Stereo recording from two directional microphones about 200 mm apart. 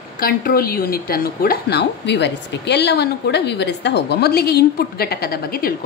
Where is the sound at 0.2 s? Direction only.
50° left (ahead or behind).